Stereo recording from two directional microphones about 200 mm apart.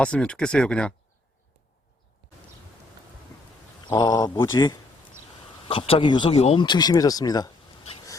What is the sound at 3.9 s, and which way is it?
Speech, 20° left (ahead or behind).